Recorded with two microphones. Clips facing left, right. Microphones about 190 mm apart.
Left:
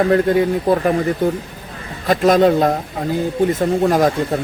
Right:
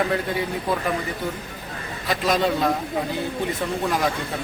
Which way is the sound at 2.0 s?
50° left (ahead or behind).